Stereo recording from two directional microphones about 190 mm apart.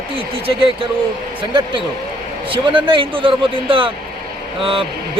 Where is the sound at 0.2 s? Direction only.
30° right (ahead or behind).